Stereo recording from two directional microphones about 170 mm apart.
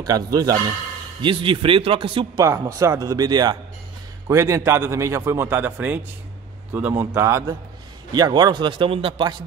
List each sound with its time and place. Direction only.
0.0 s speech: 20° right (ahead or behind)
2.4 s a man's voice: 20° right (ahead or behind)